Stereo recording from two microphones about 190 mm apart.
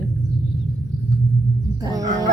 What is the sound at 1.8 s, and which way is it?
Speech, 20° right (ahead or behind).